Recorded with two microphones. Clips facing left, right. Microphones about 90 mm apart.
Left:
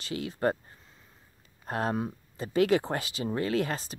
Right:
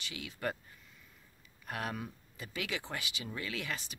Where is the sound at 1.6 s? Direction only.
35° left (ahead or behind).